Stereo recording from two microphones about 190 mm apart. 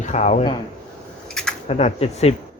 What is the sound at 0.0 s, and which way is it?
Speech, 40° left (ahead or behind).